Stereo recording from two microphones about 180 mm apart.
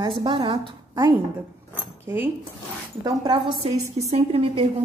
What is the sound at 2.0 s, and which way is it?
Speech, 10° right (ahead or behind).